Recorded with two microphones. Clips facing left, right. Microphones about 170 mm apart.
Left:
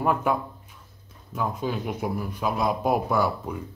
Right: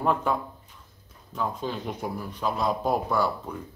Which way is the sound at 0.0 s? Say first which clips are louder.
Left 1 dB; 10° left (ahead or behind).